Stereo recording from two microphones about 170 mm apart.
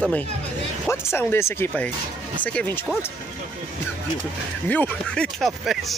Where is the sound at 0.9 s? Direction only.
15° left (ahead or behind).